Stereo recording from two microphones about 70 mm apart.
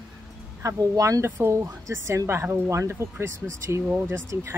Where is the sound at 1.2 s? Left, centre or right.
Right.